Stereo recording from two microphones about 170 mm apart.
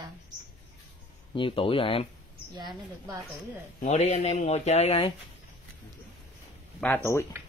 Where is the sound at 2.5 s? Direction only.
25° right (ahead or behind).